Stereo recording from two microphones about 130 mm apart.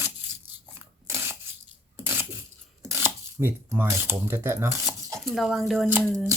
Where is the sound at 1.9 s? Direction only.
20° right (ahead or behind).